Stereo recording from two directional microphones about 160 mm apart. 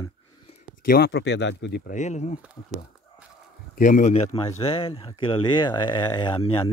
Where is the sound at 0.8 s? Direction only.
75° left (ahead or behind); by 1.8 s 90° left.